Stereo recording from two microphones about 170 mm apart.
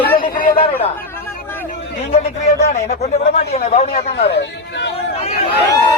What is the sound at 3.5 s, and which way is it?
Speech, 40° left (ahead or behind).